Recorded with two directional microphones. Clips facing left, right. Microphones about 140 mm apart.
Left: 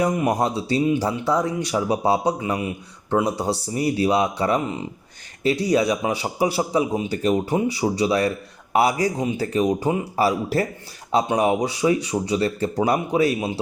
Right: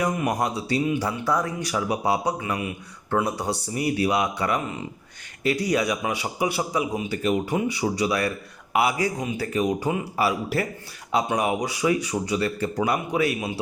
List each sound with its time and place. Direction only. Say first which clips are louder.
0.0 s a man's voice: left 4 dB; 25° left (ahead or behind)